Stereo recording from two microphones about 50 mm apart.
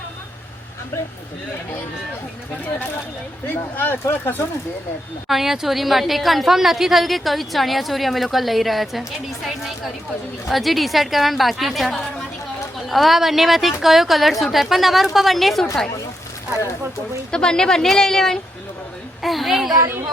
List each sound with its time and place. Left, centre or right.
3.4 s speech: left
5.3 s a woman's voice: centre
17.3 s a woman's voice: centre
19.2 s a woman's voice: centre